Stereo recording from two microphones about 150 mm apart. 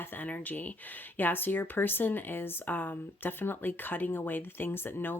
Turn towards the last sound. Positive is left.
turn(degrees=15)  # may be behind; listen again after turning